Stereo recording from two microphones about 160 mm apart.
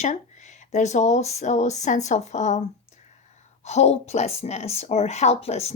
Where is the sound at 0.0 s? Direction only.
50° left (ahead or behind).